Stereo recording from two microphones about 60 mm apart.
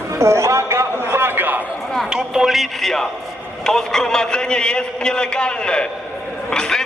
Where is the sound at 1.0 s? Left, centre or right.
Right.